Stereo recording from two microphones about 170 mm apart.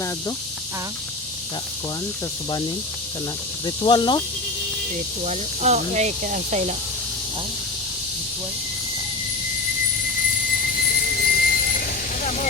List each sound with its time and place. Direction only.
3.8 s speech: 30° left (ahead or behind)
5.2 s speech: 40° right (ahead or behind)
10.8 s vehicle: 65° left (ahead or behind); by 12.5 s 50° left (ahead or behind)